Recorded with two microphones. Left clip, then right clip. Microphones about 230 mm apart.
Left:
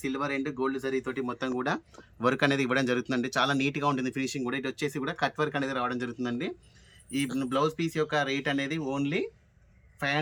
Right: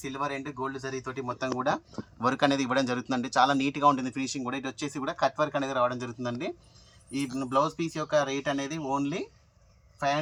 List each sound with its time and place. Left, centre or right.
0.0 s speech: centre
7.5 s speech: centre